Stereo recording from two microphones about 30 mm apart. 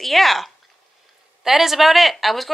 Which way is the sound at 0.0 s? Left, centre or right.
Centre.